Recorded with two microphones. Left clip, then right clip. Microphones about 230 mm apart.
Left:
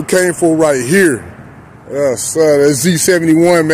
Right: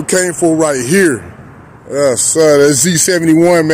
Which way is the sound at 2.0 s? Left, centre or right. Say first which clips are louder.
Right 2 dB; centre.